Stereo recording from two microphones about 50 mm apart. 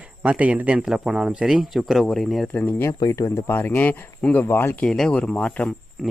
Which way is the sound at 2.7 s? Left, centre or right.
Left.